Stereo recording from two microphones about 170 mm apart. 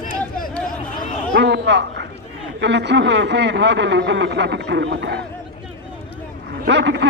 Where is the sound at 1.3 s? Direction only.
90° right.